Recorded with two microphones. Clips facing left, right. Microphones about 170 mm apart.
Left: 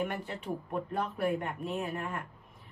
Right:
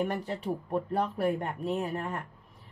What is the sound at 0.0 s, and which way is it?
Speech, 35° right (ahead or behind).